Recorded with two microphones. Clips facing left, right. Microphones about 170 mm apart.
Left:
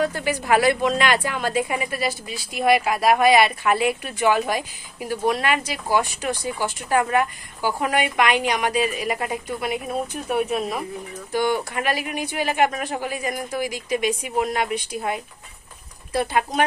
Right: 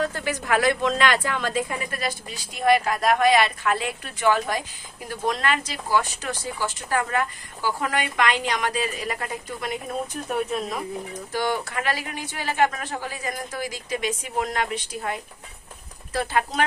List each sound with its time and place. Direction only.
0.0 s speech: 10° left (ahead or behind)